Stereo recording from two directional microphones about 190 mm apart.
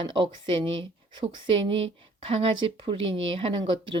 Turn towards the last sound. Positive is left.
turn(degrees=-25)  # may be behind; listen again after turning